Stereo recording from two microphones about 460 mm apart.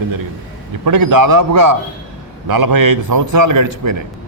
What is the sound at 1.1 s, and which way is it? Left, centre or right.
A man's voice, right.